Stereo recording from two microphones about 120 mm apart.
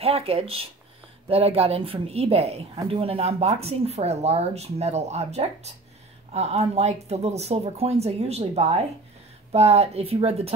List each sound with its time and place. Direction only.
0.0 s speech: 55° right (ahead or behind)